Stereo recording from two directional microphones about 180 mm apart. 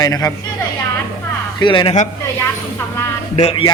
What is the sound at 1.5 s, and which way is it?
Speech, 25° left (ahead or behind).